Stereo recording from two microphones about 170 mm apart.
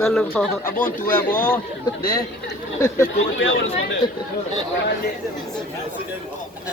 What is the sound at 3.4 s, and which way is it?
Speech, 90° left.